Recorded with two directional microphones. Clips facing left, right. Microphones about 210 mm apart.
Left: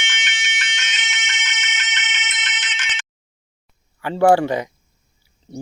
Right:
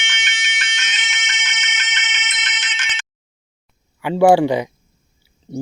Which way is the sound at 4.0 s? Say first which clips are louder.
Right 2 dB; 10° right (ahead or behind).